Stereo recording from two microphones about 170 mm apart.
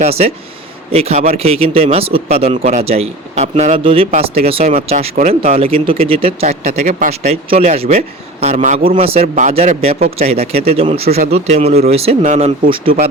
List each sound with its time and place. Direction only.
0.0 s speech: 35° right (ahead or behind)
5.5 s a man's voice: 35° right (ahead or behind); by 10.0 s 50° right (ahead or behind)
10.0 s a man's voice: 35° right (ahead or behind)